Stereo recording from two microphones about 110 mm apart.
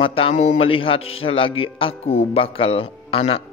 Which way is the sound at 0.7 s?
55° left (ahead or behind).